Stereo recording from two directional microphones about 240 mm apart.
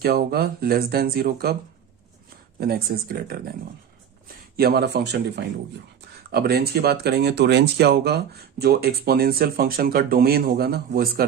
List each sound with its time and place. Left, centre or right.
0.0 s speech: right
2.6 s speech: right
4.5 s speech: right